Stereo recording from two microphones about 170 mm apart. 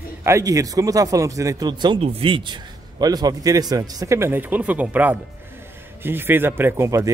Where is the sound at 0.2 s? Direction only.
20° right (ahead or behind).